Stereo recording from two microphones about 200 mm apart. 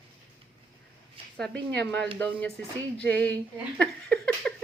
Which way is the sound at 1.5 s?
60° right (ahead or behind).